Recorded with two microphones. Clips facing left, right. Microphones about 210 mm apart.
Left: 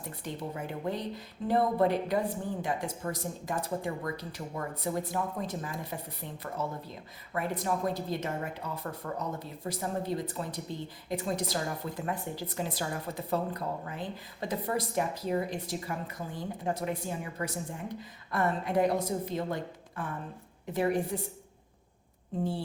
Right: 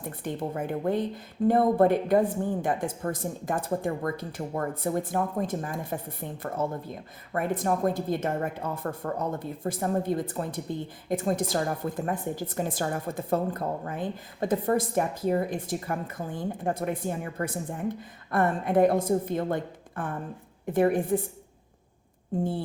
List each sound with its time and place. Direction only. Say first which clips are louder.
0.0 s a woman's voice: right 6 dB; 50° right (ahead or behind)
20.7 s a woman's voice: right 6 dB; 50° right (ahead or behind)